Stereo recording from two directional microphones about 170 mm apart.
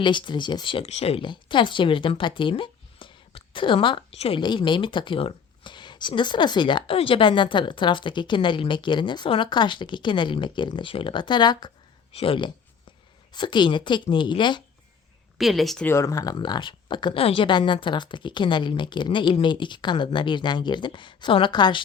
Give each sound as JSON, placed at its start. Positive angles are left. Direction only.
{"t": 0.0, "sound": "speech", "side_deg": 30}
{"t": 15.4, "sound": "speech", "side_deg": 0}
{"t": 15.9, "sound": "speech", "side_deg": 20}